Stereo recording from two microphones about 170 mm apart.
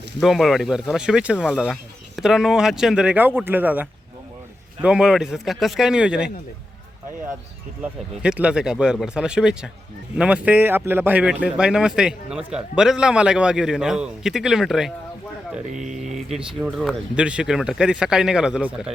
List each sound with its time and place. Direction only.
0.2 s speech: centre (ahead or behind)
7.8 s a man's voice: 5° right (ahead or behind)
15.7 s speech: 45° right (ahead or behind)
16.1 s speech: centre (ahead or behind)